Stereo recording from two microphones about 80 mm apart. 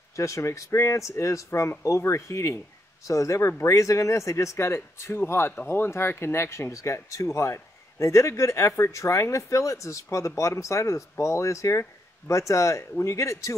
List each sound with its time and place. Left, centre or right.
0.1 s speech: left